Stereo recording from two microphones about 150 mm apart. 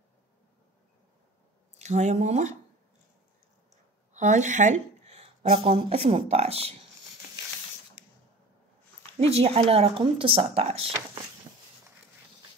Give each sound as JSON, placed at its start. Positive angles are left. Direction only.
{"t": 1.8, "sound": "speech", "side_deg": -50}
{"t": 4.1, "sound": "speech", "side_deg": -55}
{"t": 9.2, "sound": "speech", "side_deg": -40}